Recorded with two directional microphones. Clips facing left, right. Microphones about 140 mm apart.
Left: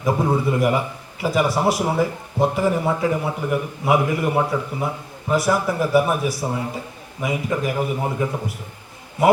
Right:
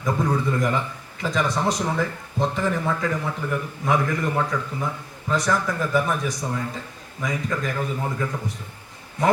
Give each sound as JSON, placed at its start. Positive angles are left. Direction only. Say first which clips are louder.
{"t": 0.0, "sound": "a man's voice", "louder": "left 3 dB", "side_deg": 25}
{"t": 6.4, "sound": "a man's voice", "louder": "left 3 dB", "side_deg": 20}